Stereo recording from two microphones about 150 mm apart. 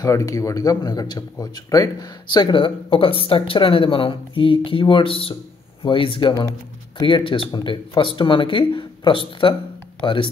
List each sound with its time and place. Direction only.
0.0 s speech: 20° left (ahead or behind)